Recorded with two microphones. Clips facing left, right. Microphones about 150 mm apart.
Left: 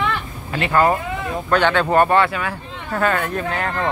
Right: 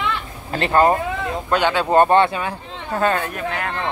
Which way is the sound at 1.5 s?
15° right (ahead or behind).